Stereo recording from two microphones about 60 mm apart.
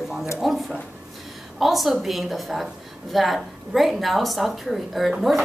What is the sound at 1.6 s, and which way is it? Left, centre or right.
A woman's voice, centre.